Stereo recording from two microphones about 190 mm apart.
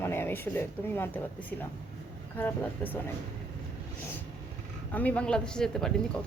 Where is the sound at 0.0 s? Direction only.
10° left (ahead or behind).